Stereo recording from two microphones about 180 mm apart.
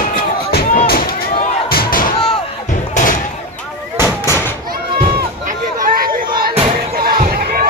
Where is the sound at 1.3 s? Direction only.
35° left (ahead or behind).